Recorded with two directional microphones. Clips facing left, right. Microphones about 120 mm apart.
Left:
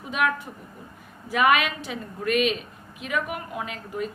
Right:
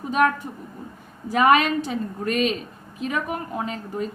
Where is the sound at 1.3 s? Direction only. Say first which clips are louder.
Right 4 dB; 35° right (ahead or behind).